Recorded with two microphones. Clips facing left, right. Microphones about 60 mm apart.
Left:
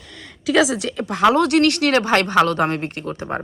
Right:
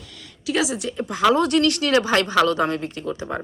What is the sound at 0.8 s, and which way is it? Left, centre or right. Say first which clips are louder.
Speech: left 3 dB; left.